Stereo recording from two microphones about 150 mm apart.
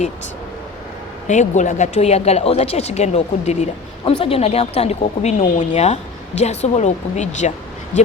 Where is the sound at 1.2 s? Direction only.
50° left (ahead or behind).